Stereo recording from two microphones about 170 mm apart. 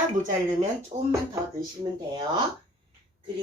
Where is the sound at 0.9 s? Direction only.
40° right (ahead or behind).